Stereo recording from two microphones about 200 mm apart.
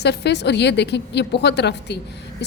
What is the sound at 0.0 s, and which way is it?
A woman's voice, 55° left (ahead or behind).